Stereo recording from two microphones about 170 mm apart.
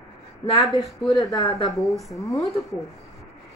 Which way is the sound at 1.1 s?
20° left (ahead or behind).